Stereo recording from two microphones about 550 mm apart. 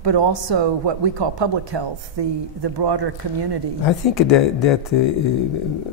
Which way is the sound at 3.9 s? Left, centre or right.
Left.